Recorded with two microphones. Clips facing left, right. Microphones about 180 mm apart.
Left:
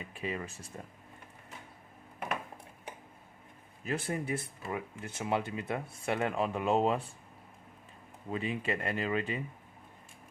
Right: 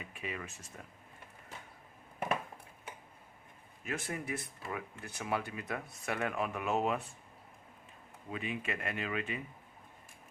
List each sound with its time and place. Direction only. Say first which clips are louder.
0.0 s speech: left 5 dB; 30° left (ahead or behind)
3.8 s speech: left 5 dB; 30° left (ahead or behind)
8.3 s speech: left 5 dB; 35° left (ahead or behind)